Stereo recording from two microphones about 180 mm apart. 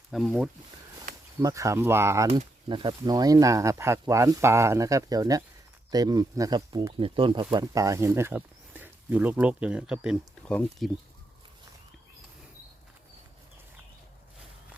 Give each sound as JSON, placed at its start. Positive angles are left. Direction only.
{"t": 0.1, "sound": "speech", "side_deg": 0}
{"t": 1.4, "sound": "speech", "side_deg": -20}
{"t": 2.6, "sound": "speech", "side_deg": -25}